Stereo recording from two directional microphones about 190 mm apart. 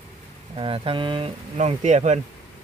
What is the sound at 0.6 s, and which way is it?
Speech, 30° right (ahead or behind).